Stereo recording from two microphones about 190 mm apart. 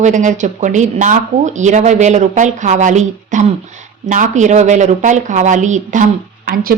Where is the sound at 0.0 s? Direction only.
40° right (ahead or behind).